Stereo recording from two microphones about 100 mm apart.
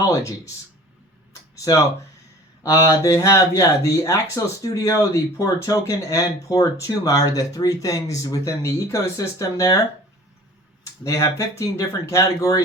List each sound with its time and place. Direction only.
1.3 s a sound: 35° left (ahead or behind)
2.6 s speech: 30° left (ahead or behind)
11.0 s speech: 35° left (ahead or behind)